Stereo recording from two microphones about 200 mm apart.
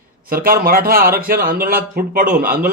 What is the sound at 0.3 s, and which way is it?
A man's voice, 45° right (ahead or behind).